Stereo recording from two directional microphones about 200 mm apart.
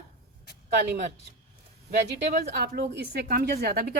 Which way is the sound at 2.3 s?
50° right (ahead or behind).